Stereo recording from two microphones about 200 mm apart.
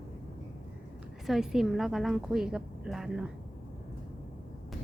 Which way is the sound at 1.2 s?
Centre (ahead or behind).